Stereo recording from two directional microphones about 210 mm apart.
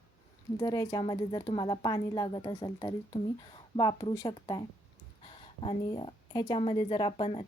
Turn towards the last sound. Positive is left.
turn(degrees=25)  # may be behind; listen again after turning